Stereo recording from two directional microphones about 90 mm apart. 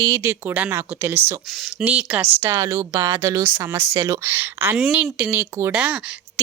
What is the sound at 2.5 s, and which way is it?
A woman's voice, 35° right (ahead or behind).